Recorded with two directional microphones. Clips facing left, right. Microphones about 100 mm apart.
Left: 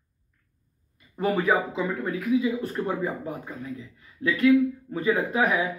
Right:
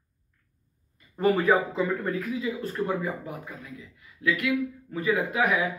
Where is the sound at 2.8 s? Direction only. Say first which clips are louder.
Right 2 dB; 25° left (ahead or behind).